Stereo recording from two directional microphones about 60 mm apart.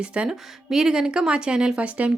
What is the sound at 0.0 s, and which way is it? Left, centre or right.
A woman's voice, centre.